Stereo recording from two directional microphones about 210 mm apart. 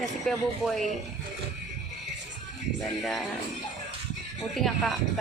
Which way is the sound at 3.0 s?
Centre (ahead or behind).